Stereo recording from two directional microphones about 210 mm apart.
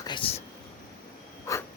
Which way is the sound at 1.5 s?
15° left (ahead or behind).